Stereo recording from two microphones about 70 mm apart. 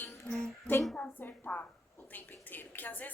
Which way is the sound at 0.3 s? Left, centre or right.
Centre.